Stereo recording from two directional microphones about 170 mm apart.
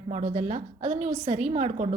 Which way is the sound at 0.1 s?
45° right (ahead or behind).